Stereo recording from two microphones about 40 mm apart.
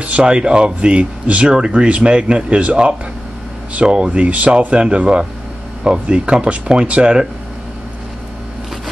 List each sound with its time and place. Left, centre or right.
0.0 s speech: right